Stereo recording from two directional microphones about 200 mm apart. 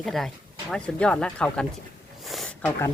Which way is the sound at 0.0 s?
Centre (ahead or behind).